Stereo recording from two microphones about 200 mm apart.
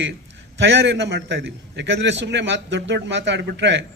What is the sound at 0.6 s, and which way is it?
A man's voice, 60° right (ahead or behind).